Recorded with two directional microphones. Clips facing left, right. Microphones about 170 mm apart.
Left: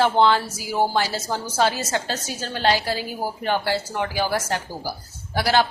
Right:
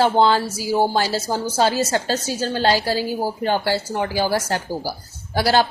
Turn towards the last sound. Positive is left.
turn(degrees=-35)  # may be behind; listen again after turning